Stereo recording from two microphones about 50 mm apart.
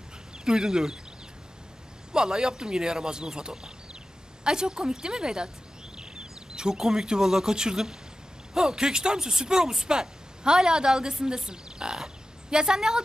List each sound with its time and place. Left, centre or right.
0.5 s speech: centre
2.1 s speech: centre